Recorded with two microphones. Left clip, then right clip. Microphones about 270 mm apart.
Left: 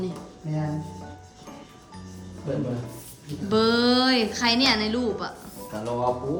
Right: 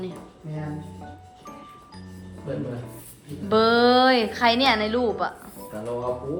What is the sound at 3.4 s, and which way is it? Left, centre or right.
A woman's voice, centre.